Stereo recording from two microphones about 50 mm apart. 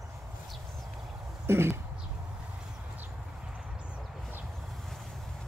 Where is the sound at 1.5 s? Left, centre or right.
Right.